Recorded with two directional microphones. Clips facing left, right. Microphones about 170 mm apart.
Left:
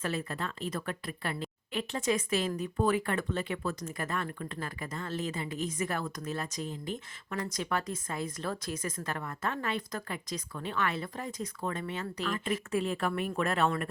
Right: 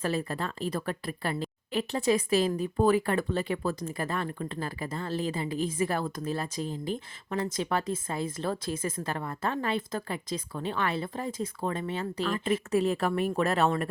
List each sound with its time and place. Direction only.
0.0 s speech: 35° right (ahead or behind)